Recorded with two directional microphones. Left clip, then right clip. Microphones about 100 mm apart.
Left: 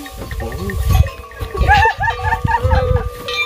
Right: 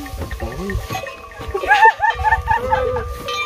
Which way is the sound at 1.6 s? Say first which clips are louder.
Right 1 dB; 5° left (ahead or behind).